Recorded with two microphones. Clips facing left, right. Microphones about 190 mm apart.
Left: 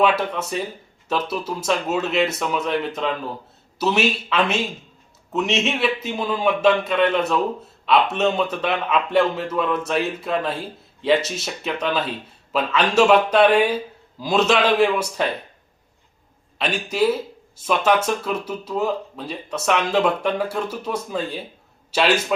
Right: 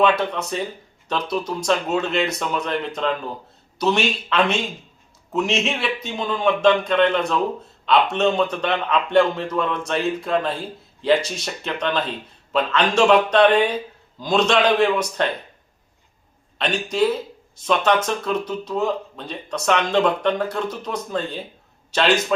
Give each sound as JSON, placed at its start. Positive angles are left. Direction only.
{"t": 0.0, "sound": "speech", "side_deg": 5}
{"t": 16.6, "sound": "speech", "side_deg": 5}